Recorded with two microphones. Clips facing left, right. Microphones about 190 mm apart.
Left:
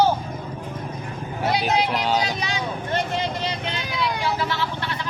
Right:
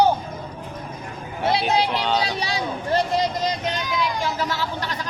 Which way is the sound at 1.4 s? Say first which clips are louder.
Right 2 dB; 30° right (ahead or behind).